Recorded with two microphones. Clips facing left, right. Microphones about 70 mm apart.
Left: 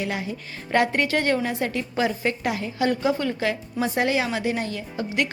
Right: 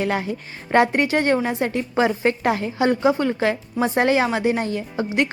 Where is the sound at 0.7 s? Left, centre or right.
Right.